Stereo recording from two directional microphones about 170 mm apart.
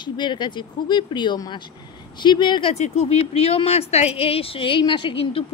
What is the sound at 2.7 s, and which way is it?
A woman's voice, 40° left (ahead or behind).